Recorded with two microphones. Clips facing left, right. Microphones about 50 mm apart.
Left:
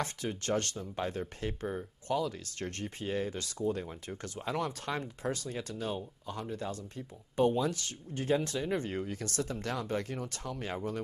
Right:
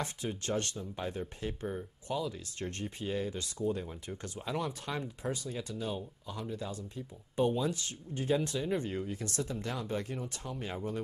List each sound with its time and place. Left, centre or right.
0.0 s speech: left